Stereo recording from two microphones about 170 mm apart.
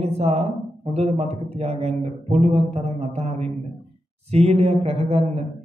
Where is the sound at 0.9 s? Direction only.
40° right (ahead or behind).